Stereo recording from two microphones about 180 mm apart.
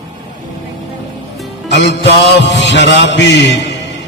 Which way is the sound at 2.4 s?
80° left.